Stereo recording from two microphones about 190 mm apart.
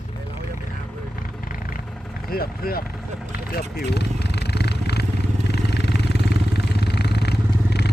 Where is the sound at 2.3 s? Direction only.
50° left (ahead or behind).